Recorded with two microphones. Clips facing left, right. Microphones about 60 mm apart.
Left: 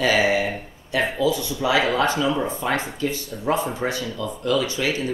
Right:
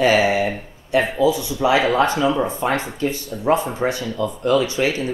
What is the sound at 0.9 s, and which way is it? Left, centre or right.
Speech, right.